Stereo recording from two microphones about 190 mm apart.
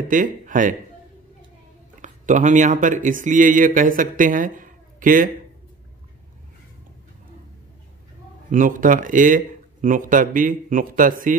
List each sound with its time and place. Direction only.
0.1 s speech: 45° right (ahead or behind)
2.0 s speech: 40° right (ahead or behind)
8.5 s speech: 45° right (ahead or behind)